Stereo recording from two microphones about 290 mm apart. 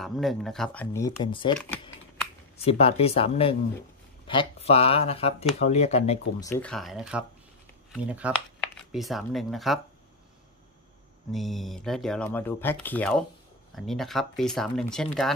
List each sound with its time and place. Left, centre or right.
0.0 s speech: centre
2.5 s speech: left
6.4 s speech: centre
11.3 s speech: centre